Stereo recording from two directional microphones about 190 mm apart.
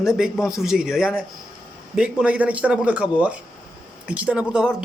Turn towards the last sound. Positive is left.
turn(degrees=-5)  # may be behind; listen again after turning